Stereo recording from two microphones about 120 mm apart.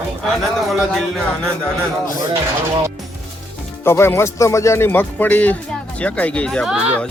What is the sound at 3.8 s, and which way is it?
Speech, 20° left (ahead or behind).